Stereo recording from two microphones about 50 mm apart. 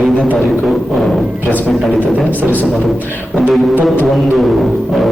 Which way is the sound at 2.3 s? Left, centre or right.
Left.